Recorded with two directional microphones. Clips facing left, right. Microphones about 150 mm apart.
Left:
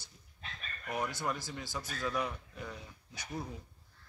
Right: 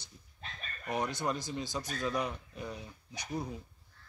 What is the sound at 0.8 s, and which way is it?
Speech, 20° right (ahead or behind).